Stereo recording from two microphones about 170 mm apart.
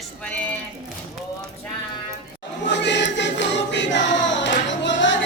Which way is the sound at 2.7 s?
90° left.